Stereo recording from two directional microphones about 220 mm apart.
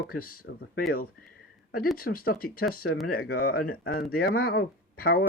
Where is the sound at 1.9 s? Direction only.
40° left (ahead or behind).